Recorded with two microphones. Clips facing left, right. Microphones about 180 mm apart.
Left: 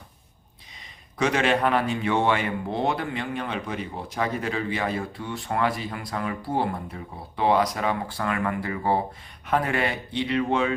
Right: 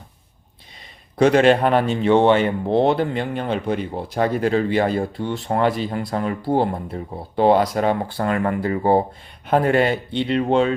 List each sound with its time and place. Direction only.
1.3 s speech: 35° right (ahead or behind)